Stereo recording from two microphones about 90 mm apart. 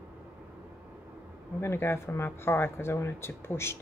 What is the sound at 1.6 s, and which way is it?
Speech, 25° left (ahead or behind).